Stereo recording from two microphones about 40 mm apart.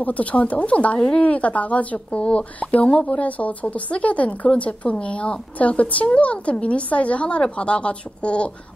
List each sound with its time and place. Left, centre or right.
0.0 s speech: left
0.9 s speech: left
1.2 s speech: left
3.2 s speech: left